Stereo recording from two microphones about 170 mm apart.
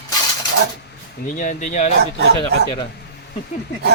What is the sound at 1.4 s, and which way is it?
Speech, 50° left (ahead or behind).